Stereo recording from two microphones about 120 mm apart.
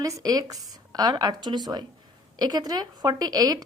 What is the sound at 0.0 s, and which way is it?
A woman's voice, 30° right (ahead or behind).